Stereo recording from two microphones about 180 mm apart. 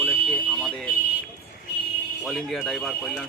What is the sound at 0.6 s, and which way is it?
Speech, centre (ahead or behind).